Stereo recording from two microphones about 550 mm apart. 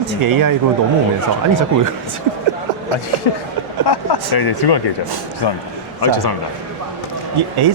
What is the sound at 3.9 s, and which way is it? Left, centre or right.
Speech, left.